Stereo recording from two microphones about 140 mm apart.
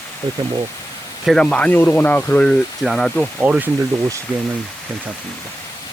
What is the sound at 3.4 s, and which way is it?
Speech, 10° right (ahead or behind).